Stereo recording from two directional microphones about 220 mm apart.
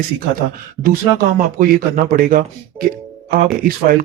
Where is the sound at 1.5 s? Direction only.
40° right (ahead or behind).